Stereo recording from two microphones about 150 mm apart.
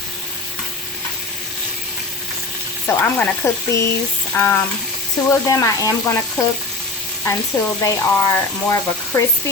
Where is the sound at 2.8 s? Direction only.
15° left (ahead or behind).